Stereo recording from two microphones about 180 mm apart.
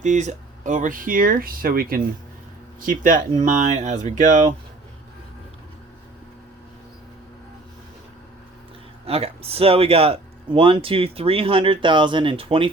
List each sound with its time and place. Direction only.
0.0 s speech: 40° right (ahead or behind)
9.0 s speech: 35° right (ahead or behind)